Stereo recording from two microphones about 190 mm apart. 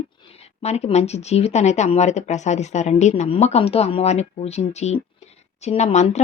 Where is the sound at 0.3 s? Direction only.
35° left (ahead or behind).